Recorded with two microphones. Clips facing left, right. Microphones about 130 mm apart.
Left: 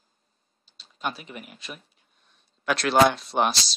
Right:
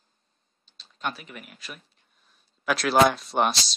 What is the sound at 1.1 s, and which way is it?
Speech, 25° left (ahead or behind).